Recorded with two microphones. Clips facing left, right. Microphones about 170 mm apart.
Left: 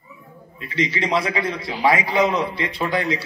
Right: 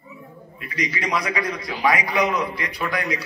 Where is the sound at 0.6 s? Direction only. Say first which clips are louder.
Left 4 dB; 25° left (ahead or behind).